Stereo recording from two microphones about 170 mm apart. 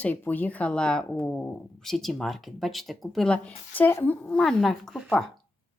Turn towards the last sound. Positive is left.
turn(degrees=0)  # may be behind; listen again after turning